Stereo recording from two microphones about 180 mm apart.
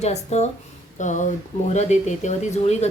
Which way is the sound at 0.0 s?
40° left (ahead or behind).